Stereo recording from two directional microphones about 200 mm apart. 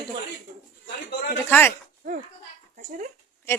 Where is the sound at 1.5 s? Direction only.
10° left (ahead or behind).